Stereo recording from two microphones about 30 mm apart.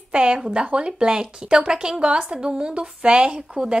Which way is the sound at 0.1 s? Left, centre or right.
Right.